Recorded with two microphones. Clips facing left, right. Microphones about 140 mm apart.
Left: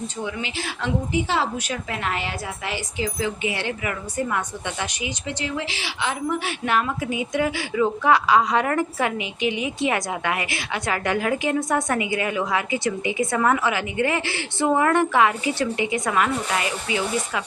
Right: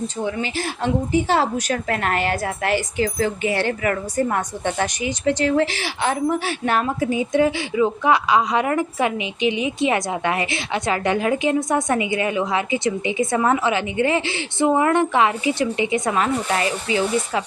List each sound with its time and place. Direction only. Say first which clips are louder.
0.2 s a woman's voice: right 5 dB; 35° right (ahead or behind)